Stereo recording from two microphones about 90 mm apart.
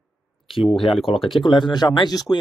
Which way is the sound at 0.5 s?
Centre (ahead or behind).